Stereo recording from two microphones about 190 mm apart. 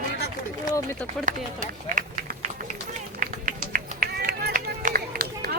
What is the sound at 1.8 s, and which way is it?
Run, 45° right (ahead or behind).